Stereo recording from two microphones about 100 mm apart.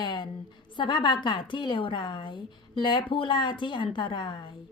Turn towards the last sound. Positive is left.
turn(degrees=50)  # may be behind; listen again after turning